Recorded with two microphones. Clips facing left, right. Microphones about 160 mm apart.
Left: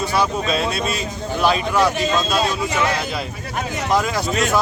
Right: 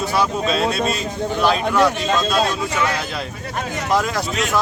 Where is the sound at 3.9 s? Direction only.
Centre (ahead or behind).